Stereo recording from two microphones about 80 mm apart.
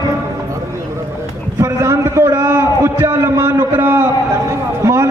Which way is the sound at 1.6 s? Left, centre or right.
Right.